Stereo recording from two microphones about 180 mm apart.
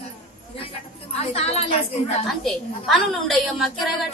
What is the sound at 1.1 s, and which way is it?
Speech, 35° left (ahead or behind).